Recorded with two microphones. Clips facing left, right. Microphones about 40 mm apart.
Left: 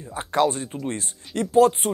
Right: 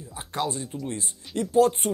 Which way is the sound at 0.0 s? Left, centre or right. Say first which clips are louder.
Left 8 dB; left.